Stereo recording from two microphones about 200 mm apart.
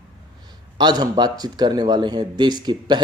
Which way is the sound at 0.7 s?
20° right (ahead or behind).